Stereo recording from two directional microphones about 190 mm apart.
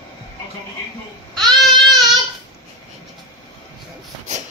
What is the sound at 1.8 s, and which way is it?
Child singing, centre (ahead or behind).